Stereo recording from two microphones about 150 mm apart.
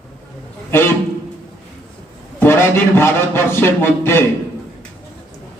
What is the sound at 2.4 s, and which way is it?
A man's voice, 15° left (ahead or behind).